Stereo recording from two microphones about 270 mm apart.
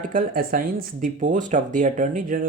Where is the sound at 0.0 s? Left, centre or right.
Right.